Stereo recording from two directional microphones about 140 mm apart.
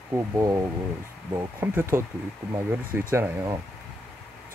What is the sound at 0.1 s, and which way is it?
Speech, 20° right (ahead or behind).